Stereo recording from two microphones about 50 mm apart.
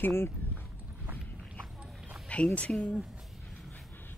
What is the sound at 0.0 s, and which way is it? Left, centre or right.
Speech, left.